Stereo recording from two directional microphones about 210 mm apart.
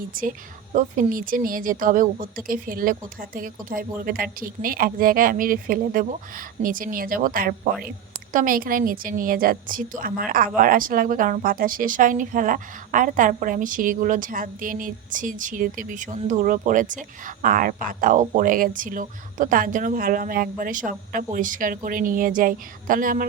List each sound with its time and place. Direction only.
0.2 s a woman's voice: 40° right (ahead or behind)